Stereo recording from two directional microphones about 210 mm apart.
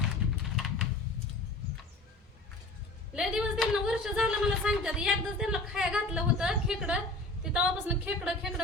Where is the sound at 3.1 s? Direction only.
5° right (ahead or behind).